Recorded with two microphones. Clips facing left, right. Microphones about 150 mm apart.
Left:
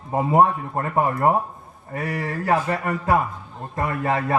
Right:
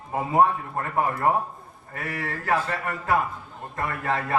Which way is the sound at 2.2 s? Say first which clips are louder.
Left 3 dB; 20° left (ahead or behind).